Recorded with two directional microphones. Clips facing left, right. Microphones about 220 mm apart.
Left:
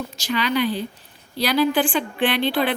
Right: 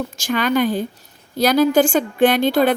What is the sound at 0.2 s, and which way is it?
Speech, 50° right (ahead or behind).